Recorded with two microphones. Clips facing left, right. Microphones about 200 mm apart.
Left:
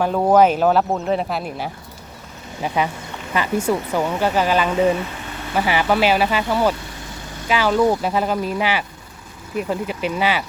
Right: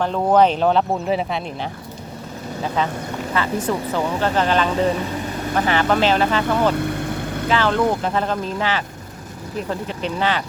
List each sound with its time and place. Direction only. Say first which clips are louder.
0.0 s speech: left 1 dB; 10° left (ahead or behind)
6.7 s vehicle: right 12 dB; 60° right (ahead or behind)
7.4 s speech: left 2 dB; 10° left (ahead or behind)